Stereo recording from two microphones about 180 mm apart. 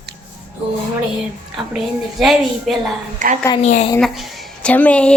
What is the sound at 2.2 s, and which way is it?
Speech, centre (ahead or behind).